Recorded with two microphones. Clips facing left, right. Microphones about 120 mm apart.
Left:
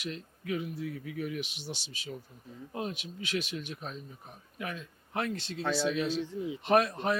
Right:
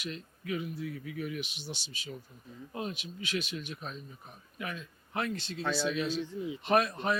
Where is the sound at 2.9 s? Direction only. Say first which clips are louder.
Left 1 dB; 55° left (ahead or behind).